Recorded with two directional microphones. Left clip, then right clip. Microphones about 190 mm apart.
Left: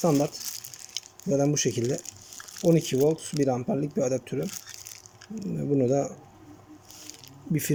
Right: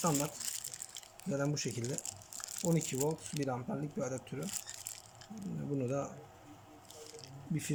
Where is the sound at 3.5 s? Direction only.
35° left (ahead or behind).